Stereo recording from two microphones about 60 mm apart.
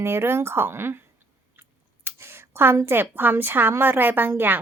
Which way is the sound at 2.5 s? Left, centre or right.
Right.